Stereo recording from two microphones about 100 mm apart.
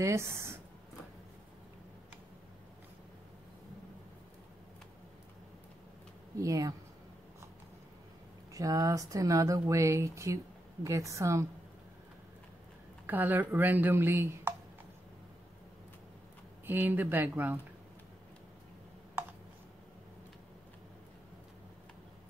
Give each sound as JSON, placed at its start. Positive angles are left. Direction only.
{"t": 0.0, "sound": "speech", "side_deg": -25}
{"t": 6.3, "sound": "speech", "side_deg": -35}
{"t": 8.5, "sound": "speech", "side_deg": -35}
{"t": 13.0, "sound": "speech", "side_deg": -20}
{"t": 16.6, "sound": "speech", "side_deg": -20}